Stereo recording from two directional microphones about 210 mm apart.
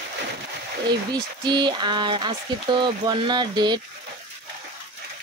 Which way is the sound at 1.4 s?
20° right (ahead or behind).